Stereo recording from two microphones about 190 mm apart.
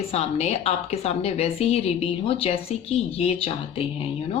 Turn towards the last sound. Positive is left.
turn(degrees=30)  # may be behind; listen again after turning